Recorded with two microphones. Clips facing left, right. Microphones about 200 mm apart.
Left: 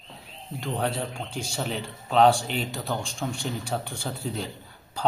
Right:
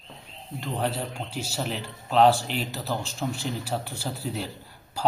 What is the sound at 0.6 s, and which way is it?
A man's voice, centre (ahead or behind).